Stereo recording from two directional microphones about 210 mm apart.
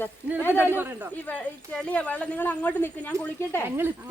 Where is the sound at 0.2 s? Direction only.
10° right (ahead or behind).